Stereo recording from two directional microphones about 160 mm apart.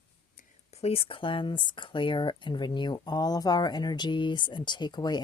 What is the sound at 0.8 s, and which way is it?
Speech, 40° left (ahead or behind).